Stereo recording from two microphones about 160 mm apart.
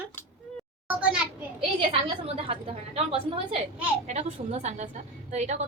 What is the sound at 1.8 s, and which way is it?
A woman's voice, 35° right (ahead or behind).